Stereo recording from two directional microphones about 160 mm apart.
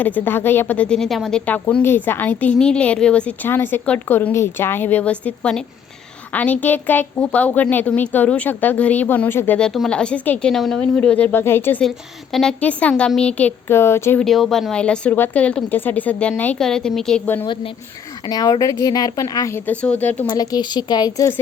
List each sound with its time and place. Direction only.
0.0 s a woman's voice: 10° left (ahead or behind)
14.2 s a woman's voice: centre (ahead or behind)
17.4 s a woman's voice: 30° left (ahead or behind); by 20.2 s 10° left (ahead or behind)
20.2 s a woman's voice: 25° left (ahead or behind)